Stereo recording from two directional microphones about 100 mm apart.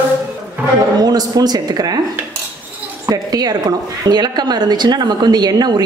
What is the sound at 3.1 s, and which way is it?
Speech, 40° right (ahead or behind).